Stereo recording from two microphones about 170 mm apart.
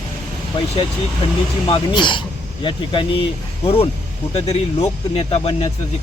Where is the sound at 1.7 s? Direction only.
30° left (ahead or behind).